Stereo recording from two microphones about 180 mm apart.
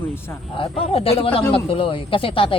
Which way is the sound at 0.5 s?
30° left (ahead or behind).